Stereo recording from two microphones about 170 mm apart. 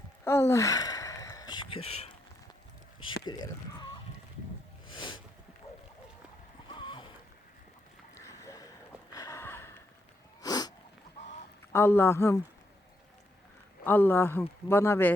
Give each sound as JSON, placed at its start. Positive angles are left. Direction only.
{"t": 0.3, "sound": "sigh", "side_deg": 15}
{"t": 3.2, "sound": "speech", "side_deg": 25}
{"t": 4.9, "sound": "a sound", "side_deg": 30}
{"t": 6.7, "sound": "boat", "side_deg": 30}
{"t": 8.2, "sound": "boat", "side_deg": 20}
{"t": 9.1, "sound": "a sound", "side_deg": 20}
{"t": 10.4, "sound": "sneeze", "side_deg": 25}
{"t": 11.7, "sound": "speech", "side_deg": 15}
{"t": 13.8, "sound": "speech", "side_deg": 10}